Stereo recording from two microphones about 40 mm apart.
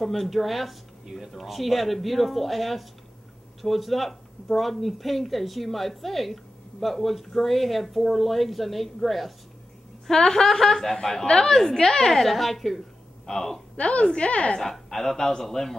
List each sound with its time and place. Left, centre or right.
0.0 s a woman's voice: centre
13.7 s a woman's voice: left
14.6 s speech: centre